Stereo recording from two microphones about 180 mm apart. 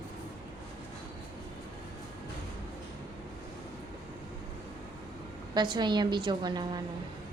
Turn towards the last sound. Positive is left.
turn(degrees=-25)  # may be behind; listen again after turning